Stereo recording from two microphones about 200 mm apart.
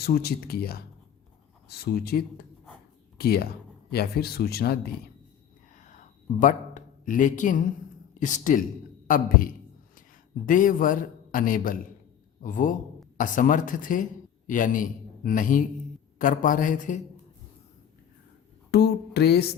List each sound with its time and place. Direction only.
0.0 s a man's voice: 50° left (ahead or behind)
5.7 s a sound: 40° left (ahead or behind)
6.4 s a man's voice: 40° left (ahead or behind)
9.0 s a sound: 45° left (ahead or behind)
10.4 s a man's voice: 45° left (ahead or behind)
18.7 s music: 55° left (ahead or behind)